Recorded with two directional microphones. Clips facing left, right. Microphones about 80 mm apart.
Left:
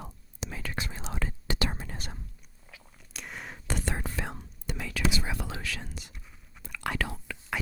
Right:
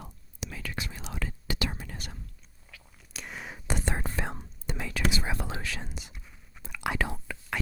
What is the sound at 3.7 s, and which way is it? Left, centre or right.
Whispering, right.